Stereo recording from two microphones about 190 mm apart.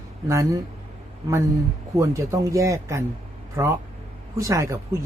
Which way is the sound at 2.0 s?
15° right (ahead or behind).